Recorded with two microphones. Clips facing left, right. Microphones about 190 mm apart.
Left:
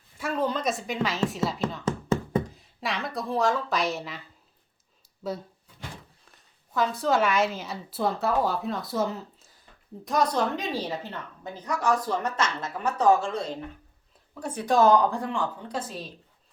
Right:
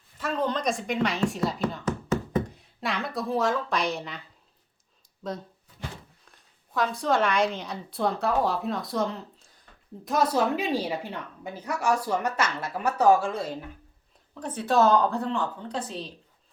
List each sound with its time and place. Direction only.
0.2 s a woman's voice: 10° left (ahead or behind)
1.8 s a sound: 30° left (ahead or behind)
2.6 s a woman's voice: centre (ahead or behind)
6.3 s a woman's voice: centre (ahead or behind)
14.3 s speech: 10° left (ahead or behind)